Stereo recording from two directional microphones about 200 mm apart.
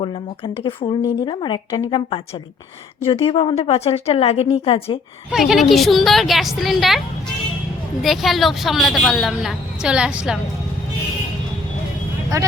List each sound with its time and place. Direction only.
0.0 s a woman's voice: 25° left (ahead or behind)
5.3 s a woman's voice: centre (ahead or behind)
8.0 s a woman's voice: centre (ahead or behind)